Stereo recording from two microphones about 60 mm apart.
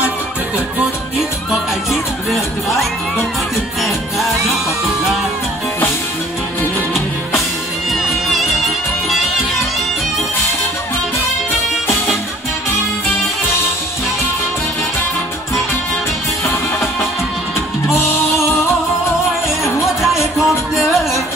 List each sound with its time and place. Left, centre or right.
1.9 s music: centre
7.9 s music: centre
20.3 s music: centre